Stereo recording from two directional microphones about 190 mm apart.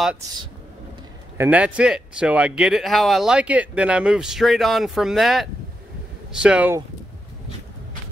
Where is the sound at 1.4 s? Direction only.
5° right (ahead or behind).